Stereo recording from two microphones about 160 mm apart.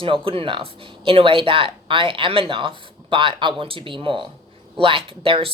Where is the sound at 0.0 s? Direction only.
35° right (ahead or behind).